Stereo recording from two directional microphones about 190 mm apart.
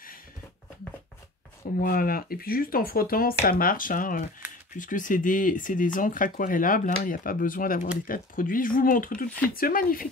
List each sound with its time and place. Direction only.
1.8 s speech: 50° left (ahead or behind)